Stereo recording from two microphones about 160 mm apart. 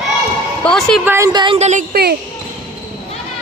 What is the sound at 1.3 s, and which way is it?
Speech, 30° right (ahead or behind).